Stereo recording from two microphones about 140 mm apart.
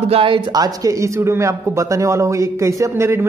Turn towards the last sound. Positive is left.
turn(degrees=-20)  # may be behind; listen again after turning